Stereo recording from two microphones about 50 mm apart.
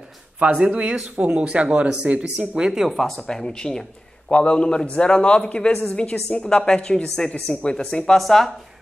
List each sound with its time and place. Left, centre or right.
0.4 s speech: right
2.9 s speech: centre
3.2 s speech: centre
8.2 s speech: centre